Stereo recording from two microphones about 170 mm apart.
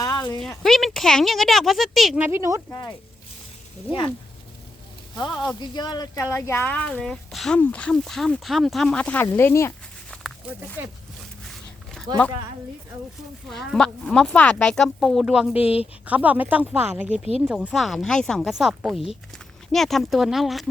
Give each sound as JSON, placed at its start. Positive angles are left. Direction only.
{"t": 0.0, "sound": "a sound", "side_deg": 20}
{"t": 0.6, "sound": "speech", "side_deg": 0}
{"t": 2.6, "sound": "speech", "side_deg": 20}
{"t": 5.1, "sound": "speech", "side_deg": 25}
{"t": 12.1, "sound": "speech", "side_deg": -25}
{"t": 13.5, "sound": "speech", "side_deg": 5}
{"t": 15.6, "sound": "speech", "side_deg": 35}
{"t": 16.0, "sound": "speech", "side_deg": -10}
{"t": 17.1, "sound": "speech", "side_deg": -40}
{"t": 17.4, "sound": "speech", "side_deg": -5}